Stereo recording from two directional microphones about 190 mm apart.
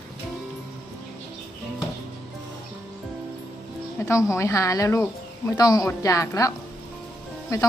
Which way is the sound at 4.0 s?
15° left (ahead or behind).